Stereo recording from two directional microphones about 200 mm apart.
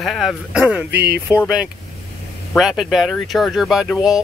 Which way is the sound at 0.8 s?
55° right (ahead or behind).